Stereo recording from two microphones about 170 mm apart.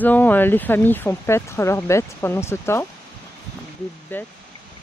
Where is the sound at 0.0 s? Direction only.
10° left (ahead or behind).